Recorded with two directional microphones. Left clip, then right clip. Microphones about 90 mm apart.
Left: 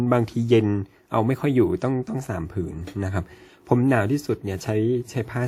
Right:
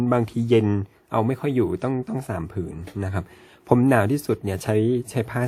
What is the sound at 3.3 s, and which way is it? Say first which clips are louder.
Speech: right 4 dB; 20° right (ahead or behind).